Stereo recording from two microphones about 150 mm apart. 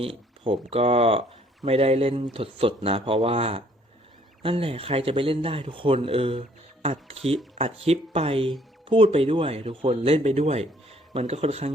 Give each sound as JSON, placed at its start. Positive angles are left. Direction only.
{"t": 0.0, "sound": "speech", "side_deg": -35}